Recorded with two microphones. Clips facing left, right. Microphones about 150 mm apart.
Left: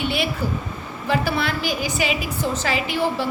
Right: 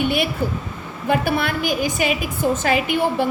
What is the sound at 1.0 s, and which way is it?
A woman's voice, 55° right (ahead or behind).